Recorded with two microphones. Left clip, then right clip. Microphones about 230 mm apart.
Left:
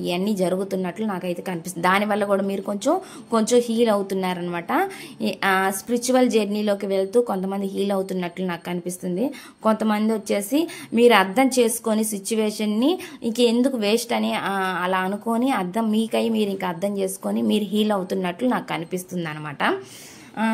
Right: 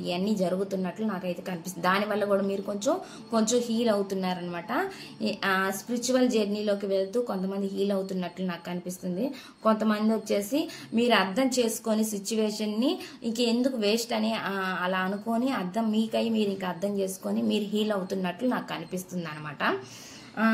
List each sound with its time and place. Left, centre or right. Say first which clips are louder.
0.0 s a woman's voice: left 5 dB; left